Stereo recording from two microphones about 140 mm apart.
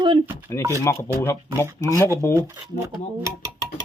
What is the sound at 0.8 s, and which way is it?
Speech, 20° left (ahead or behind).